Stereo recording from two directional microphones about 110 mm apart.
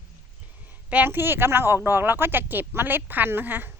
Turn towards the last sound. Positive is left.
turn(degrees=-20)  # may be behind; listen again after turning